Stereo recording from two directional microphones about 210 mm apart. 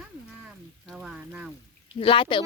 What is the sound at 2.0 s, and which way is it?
Speech, 25° left (ahead or behind).